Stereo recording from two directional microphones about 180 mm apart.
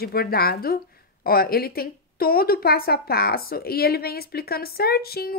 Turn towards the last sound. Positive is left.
turn(degrees=60)  # may be behind; listen again after turning